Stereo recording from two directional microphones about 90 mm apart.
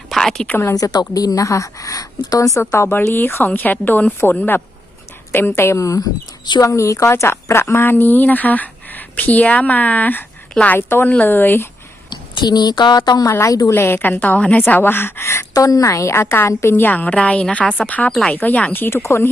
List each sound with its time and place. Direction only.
0.1 s a woman's voice: 5° left (ahead or behind)
0.7 s a woman's voice: 45° left (ahead or behind)
2.6 s a woman's voice: 25° left (ahead or behind); by 6.6 s 50° left (ahead or behind)
6.6 s a woman's voice: 35° left (ahead or behind); by 10.8 s 15° left (ahead or behind)
10.8 s a woman's voice: 25° left (ahead or behind)
12.1 s a woman's voice: 55° left (ahead or behind); by 13.7 s 40° left (ahead or behind)
13.7 s a woman's voice: 25° left (ahead or behind)